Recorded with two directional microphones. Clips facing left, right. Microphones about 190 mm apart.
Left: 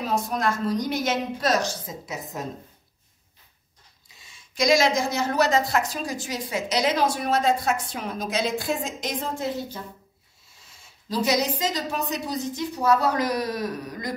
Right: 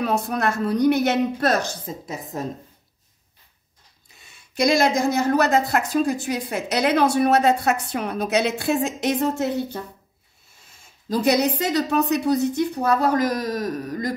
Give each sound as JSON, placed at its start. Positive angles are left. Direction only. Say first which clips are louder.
{"t": 0.0, "sound": "speech", "louder": "right 3 dB", "side_deg": -60}
{"t": 4.1, "sound": "speech", "louder": "right 2 dB", "side_deg": -60}